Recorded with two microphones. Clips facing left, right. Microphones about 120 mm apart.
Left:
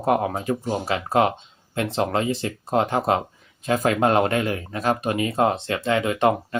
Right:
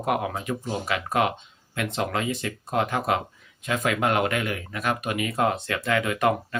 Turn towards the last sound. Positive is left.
turn(degrees=25)  # may be behind; listen again after turning